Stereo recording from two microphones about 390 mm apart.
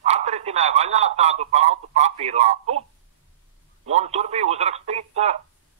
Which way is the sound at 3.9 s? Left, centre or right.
Centre.